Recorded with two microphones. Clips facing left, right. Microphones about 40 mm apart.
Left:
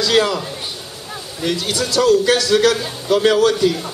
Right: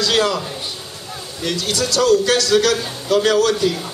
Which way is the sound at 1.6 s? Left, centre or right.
Left.